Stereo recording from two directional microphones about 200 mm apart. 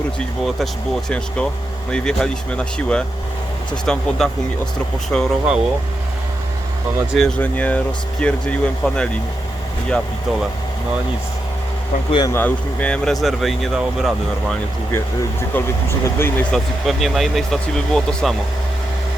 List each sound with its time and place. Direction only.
0.4 s speech: centre (ahead or behind)
7.1 s speech: 5° left (ahead or behind)
12.1 s speech: 20° left (ahead or behind)
12.4 s speech: 5° left (ahead or behind)
15.5 s speech: 10° left (ahead or behind)